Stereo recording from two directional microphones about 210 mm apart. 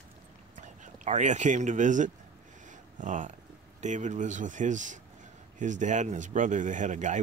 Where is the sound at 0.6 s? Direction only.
35° right (ahead or behind).